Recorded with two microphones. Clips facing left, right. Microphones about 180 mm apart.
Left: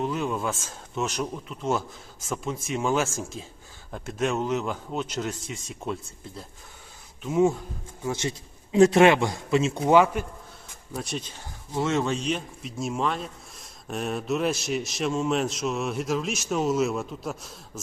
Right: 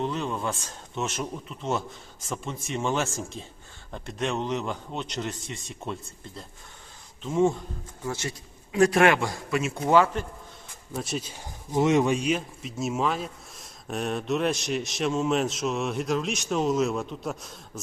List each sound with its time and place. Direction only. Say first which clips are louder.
0.0 s speech: left 2 dB; 5° left (ahead or behind)
8.0 s a man's voice: left 3 dB; 20° left (ahead or behind)
10.9 s speech: right 1 dB; centre (ahead or behind)